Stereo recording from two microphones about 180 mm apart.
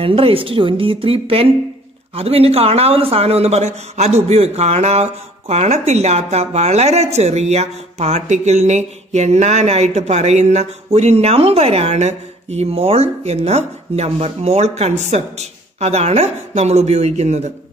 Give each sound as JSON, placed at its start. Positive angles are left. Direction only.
{"t": 0.0, "sound": "speech", "side_deg": -30}